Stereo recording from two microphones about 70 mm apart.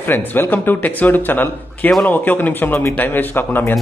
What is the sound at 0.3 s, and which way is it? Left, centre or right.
A man's voice, left.